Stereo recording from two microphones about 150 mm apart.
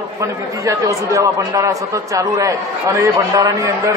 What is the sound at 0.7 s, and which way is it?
A man's voice, 20° right (ahead or behind).